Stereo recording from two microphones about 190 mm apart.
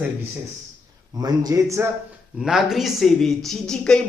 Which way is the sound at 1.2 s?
20° right (ahead or behind).